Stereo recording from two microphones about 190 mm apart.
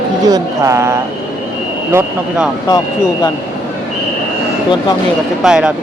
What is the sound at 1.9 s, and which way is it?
Speech, 5° right (ahead or behind).